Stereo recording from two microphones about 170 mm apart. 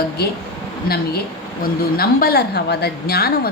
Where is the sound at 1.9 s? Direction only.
65° left (ahead or behind).